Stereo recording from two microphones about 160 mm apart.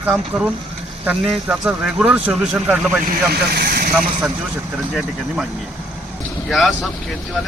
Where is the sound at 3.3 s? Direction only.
75° right (ahead or behind).